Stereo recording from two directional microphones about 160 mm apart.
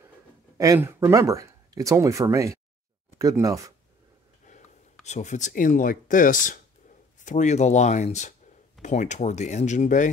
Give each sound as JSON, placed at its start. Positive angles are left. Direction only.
{"t": 0.6, "sound": "speech", "side_deg": -15}
{"t": 4.5, "sound": "a sound", "side_deg": 45}
{"t": 5.0, "sound": "speech", "side_deg": 45}